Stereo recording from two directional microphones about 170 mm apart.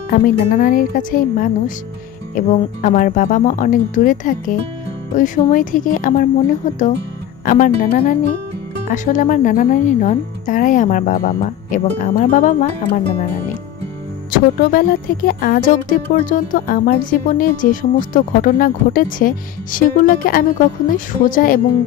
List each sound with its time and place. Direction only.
0.1 s speech: 55° left (ahead or behind)